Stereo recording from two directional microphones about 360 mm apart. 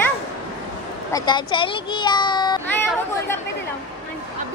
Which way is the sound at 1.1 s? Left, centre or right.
Centre.